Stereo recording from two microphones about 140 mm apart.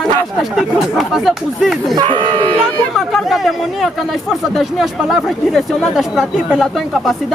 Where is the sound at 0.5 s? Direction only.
Centre (ahead or behind).